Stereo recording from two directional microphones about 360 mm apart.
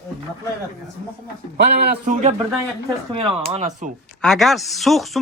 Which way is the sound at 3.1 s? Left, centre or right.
Centre.